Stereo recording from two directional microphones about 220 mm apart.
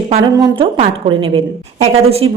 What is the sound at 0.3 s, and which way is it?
A woman's voice, 20° right (ahead or behind).